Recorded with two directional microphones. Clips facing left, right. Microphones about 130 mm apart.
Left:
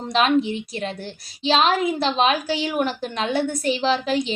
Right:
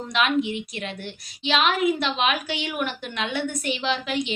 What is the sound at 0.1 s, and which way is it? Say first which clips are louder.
A woman's voice: left 4 dB; 35° left (ahead or behind).